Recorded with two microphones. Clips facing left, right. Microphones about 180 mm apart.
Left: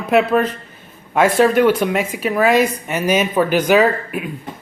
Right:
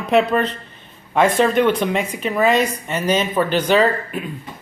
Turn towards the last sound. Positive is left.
turn(degrees=10)  # may be behind; listen again after turning